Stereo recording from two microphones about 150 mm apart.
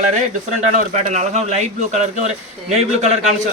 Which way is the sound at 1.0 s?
50° right (ahead or behind).